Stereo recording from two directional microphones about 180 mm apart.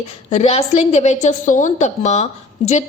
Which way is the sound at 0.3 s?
35° left (ahead or behind).